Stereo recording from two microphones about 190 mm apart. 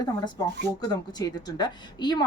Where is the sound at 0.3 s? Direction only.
20° left (ahead or behind).